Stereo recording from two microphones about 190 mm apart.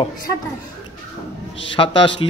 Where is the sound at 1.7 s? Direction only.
25° left (ahead or behind).